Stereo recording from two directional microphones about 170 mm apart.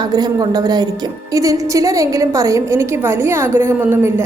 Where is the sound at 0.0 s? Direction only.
25° right (ahead or behind).